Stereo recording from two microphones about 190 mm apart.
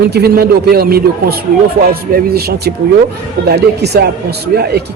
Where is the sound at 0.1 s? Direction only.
55° right (ahead or behind).